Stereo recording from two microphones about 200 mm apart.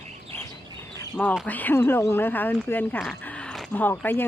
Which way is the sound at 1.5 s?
10° left (ahead or behind).